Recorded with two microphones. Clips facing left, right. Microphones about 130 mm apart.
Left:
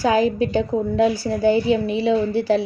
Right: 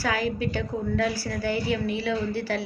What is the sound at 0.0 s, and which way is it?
A woman's voice, 20° left (ahead or behind).